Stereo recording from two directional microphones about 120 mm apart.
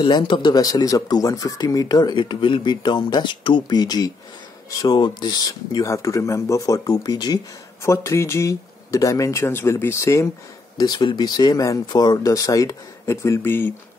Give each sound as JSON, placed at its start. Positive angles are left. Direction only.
{"t": 0.0, "sound": "speech", "side_deg": 40}
{"t": 7.8, "sound": "speech", "side_deg": 25}
{"t": 10.8, "sound": "speech", "side_deg": 35}